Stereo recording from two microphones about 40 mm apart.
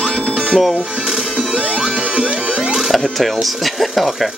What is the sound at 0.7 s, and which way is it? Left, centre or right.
Speech, right.